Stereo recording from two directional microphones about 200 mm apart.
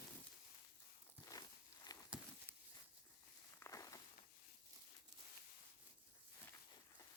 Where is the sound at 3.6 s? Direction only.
15° left (ahead or behind).